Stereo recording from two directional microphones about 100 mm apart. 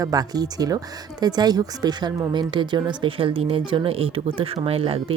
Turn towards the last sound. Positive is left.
turn(degrees=-70)  # may be behind; listen again after turning